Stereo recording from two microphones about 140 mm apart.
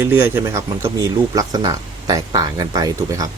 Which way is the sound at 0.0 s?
20° right (ahead or behind).